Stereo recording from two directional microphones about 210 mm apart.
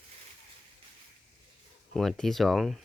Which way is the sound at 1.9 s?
Centre (ahead or behind).